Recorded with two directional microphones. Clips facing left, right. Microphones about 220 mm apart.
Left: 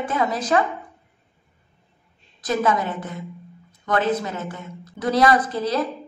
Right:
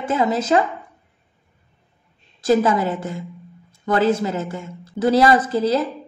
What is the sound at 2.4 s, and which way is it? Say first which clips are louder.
A woman's voice: right 5 dB; 30° right (ahead or behind).